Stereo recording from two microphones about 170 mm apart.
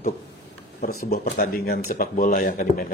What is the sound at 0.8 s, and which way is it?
Speech, 65° left (ahead or behind).